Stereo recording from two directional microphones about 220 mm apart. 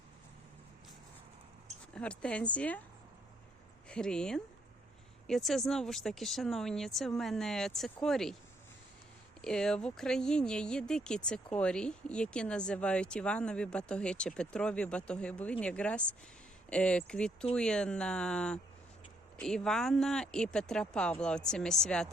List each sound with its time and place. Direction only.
2.0 s speech: 5° left (ahead or behind)
3.8 s speech: 5° left (ahead or behind)
9.4 s speech: 5° left (ahead or behind)